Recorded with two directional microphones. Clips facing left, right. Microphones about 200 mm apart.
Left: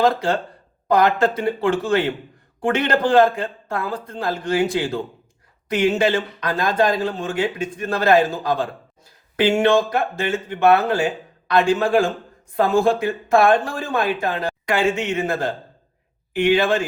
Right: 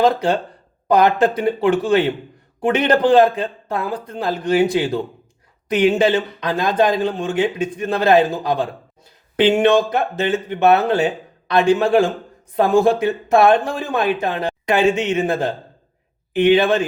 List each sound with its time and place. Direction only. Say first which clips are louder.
0.0 s a man's voice: right 2 dB; 20° right (ahead or behind)